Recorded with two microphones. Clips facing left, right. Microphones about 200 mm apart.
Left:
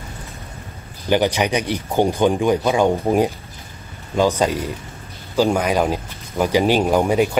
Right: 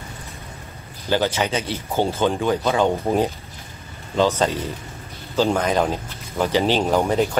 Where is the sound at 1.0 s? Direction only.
15° left (ahead or behind).